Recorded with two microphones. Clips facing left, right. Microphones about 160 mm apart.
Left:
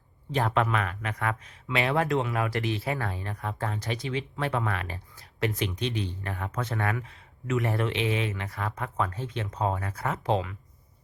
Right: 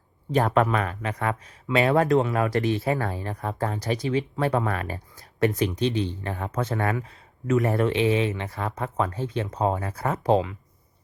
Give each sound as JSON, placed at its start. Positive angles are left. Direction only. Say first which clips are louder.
{"t": 0.3, "sound": "speech", "louder": "right 5 dB", "side_deg": -45}